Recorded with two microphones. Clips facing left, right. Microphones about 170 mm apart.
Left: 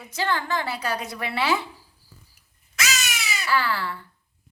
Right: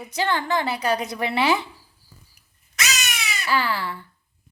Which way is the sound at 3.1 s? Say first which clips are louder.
Even; 5° left (ahead or behind).